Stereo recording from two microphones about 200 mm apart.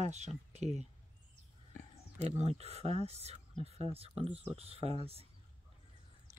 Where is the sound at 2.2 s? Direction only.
30° right (ahead or behind).